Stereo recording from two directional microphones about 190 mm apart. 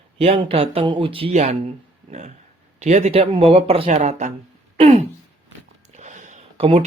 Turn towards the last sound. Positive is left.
turn(degrees=-30)  # may be behind; listen again after turning